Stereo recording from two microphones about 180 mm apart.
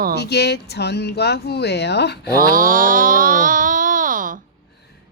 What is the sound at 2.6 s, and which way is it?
Speech, 50° right (ahead or behind).